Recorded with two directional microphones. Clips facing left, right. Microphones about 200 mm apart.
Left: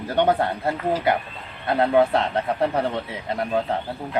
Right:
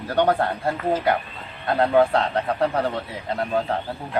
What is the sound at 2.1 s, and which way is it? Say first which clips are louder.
Speech: even; 20° left (ahead or behind).